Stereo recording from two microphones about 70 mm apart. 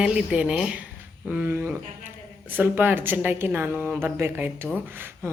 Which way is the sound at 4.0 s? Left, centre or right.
Right.